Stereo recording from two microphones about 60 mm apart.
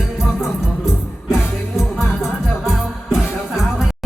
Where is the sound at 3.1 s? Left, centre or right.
Centre.